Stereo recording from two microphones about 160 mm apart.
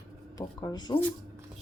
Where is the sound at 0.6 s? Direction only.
25° left (ahead or behind).